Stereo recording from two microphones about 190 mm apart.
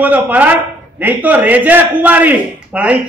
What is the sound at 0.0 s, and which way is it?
A man's voice, 10° right (ahead or behind).